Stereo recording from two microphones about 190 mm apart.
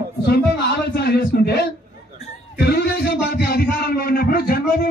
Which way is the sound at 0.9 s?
60° left (ahead or behind).